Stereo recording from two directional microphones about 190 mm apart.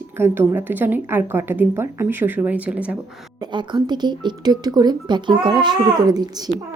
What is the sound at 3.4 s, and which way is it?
Speech, 25° right (ahead or behind).